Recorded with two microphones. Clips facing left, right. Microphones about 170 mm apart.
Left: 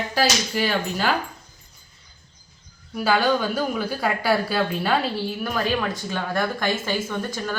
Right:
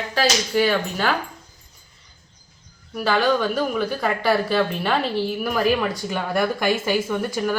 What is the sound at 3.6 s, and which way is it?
A woman's voice, 5° left (ahead or behind).